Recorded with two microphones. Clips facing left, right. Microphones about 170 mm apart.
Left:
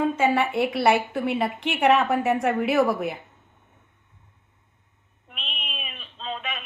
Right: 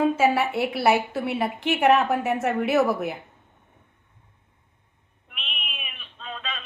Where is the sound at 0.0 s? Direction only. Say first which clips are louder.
Right 1 dB; 5° right (ahead or behind).